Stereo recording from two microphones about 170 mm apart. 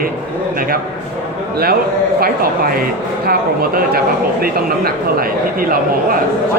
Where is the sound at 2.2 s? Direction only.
60° right (ahead or behind).